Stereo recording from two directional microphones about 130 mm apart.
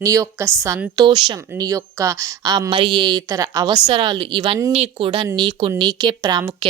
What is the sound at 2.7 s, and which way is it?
A woman's voice, 40° right (ahead or behind).